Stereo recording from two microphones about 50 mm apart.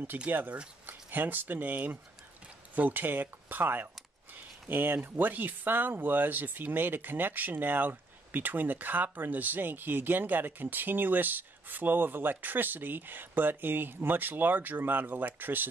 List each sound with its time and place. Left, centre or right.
0.3 s speech: right